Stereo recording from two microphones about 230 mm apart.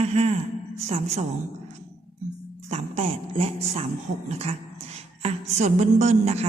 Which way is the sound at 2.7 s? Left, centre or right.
Right.